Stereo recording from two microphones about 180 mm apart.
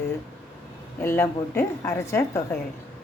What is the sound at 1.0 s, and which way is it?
A woman's voice, 15° left (ahead or behind).